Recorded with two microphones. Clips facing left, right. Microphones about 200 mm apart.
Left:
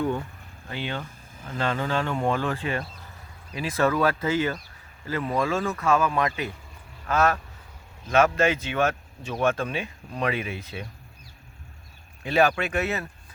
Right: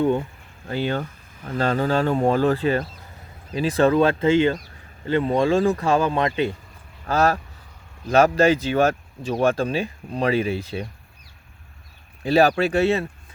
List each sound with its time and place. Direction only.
0.0 s speech: 20° right (ahead or behind)
0.7 s speech: 40° right (ahead or behind)
12.2 s speech: 35° right (ahead or behind)